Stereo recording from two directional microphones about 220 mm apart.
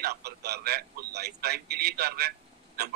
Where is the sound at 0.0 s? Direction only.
45° right (ahead or behind).